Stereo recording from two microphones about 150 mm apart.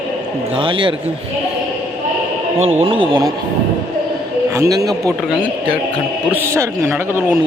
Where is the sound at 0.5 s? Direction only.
35° right (ahead or behind).